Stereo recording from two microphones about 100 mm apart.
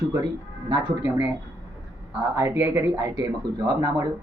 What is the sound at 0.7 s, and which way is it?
Speech, 45° right (ahead or behind).